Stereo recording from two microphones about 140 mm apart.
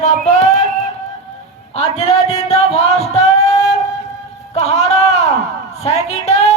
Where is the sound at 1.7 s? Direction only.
50° left (ahead or behind).